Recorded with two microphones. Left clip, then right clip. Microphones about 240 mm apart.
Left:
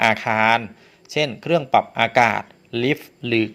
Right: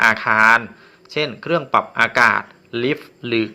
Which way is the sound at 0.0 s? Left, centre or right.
Left.